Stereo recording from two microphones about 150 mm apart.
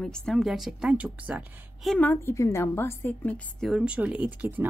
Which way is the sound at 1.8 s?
5° left (ahead or behind).